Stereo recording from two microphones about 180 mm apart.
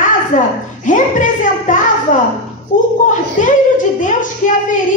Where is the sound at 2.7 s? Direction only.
45° left (ahead or behind).